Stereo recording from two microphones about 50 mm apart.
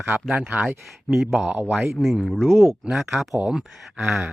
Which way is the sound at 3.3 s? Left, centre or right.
Centre.